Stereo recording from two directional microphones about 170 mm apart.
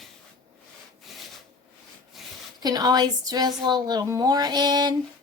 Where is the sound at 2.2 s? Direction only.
Centre (ahead or behind).